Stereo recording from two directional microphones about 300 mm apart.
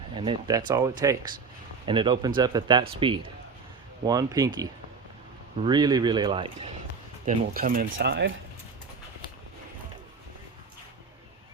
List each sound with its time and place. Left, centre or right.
0.2 s speech: centre
7.3 s speech: right